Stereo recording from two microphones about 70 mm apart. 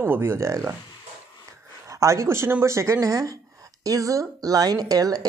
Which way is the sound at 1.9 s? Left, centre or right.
Right.